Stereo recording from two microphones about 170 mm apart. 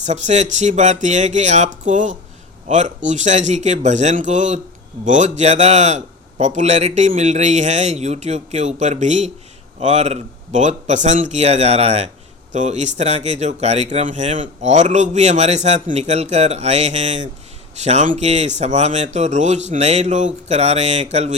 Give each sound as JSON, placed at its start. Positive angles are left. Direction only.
{"t": 0.0, "sound": "a man's voice", "side_deg": -45}